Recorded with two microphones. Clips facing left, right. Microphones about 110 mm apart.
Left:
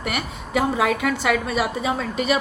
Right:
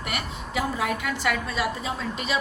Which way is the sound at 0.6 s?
90° left.